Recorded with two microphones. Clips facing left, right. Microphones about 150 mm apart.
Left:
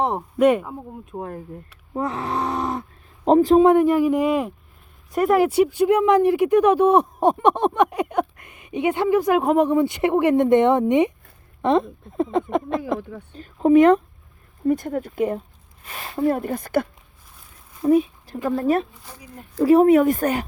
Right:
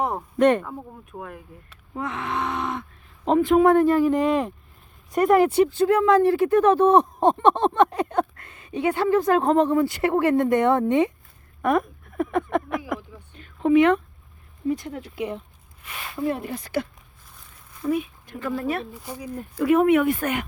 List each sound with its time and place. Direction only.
0.0 s speech: 25° left (ahead or behind)
0.3 s speech: 5° left (ahead or behind)
0.7 s speech: 30° left (ahead or behind)
3.6 s speech: 15° left (ahead or behind)
13.0 s speech: 60° left (ahead or behind)
13.3 s speech: 40° left (ahead or behind)
15.8 s speech: 35° left (ahead or behind); by 16.9 s 50° left (ahead or behind)
17.8 s speech: 35° left (ahead or behind)